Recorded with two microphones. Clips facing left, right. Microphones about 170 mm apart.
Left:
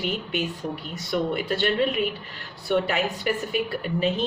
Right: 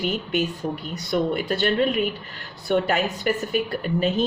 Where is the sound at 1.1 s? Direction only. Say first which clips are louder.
Right 2 dB; 45° right (ahead or behind).